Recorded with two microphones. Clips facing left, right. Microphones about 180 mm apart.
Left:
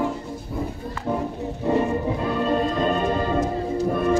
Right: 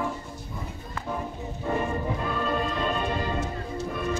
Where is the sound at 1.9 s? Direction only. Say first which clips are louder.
Left 5 dB; 20° left (ahead or behind).